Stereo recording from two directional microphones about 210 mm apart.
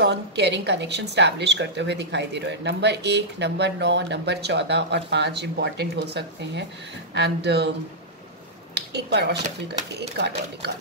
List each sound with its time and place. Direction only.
0.0 s a woman's voice: 55° right (ahead or behind)
8.7 s speech: 50° right (ahead or behind)